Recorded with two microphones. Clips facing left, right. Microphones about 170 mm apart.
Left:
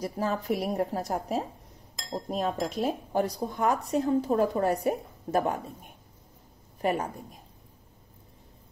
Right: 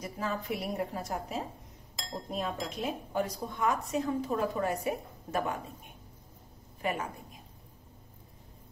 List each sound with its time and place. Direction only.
0.0 s speech: 40° left (ahead or behind)
6.8 s a woman's voice: 40° left (ahead or behind)